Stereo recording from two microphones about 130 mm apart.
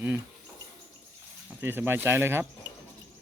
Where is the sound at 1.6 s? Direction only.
15° right (ahead or behind).